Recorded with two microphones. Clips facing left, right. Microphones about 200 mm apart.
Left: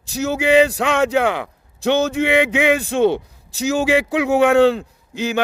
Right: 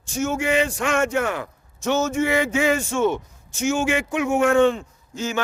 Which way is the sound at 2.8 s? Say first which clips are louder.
Left 5 dB; 35° left (ahead or behind).